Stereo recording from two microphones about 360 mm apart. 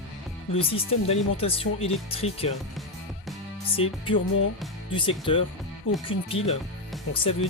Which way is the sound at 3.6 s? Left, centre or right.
Centre.